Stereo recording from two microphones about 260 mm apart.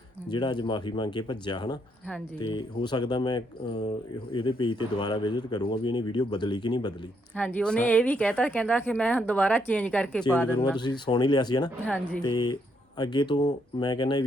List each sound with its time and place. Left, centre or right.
0.3 s speech: centre
7.3 s speech: centre
10.8 s speech: centre
11.9 s speech: centre
12.2 s speech: centre